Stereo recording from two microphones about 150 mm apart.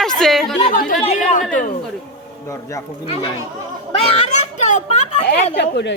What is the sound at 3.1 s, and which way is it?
Speech, 40° left (ahead or behind).